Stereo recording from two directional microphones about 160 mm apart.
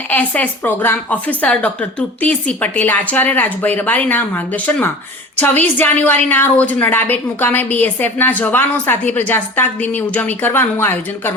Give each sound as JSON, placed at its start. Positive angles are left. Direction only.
{"t": 0.1, "sound": "a woman's voice", "side_deg": 10}